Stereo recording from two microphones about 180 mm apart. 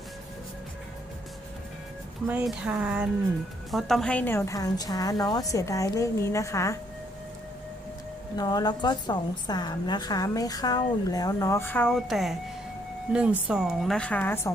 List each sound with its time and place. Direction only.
2.2 s a woman's voice: 5° right (ahead or behind); by 6.7 s 15° left (ahead or behind)
8.4 s a woman's voice: 20° left (ahead or behind); by 12.4 s centre (ahead or behind)
13.5 s a woman's voice: centre (ahead or behind)